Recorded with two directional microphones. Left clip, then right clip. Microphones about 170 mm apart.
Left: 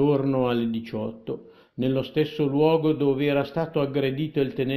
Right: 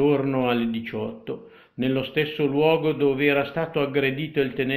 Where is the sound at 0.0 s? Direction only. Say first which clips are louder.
Right 1 dB; 50° left (ahead or behind).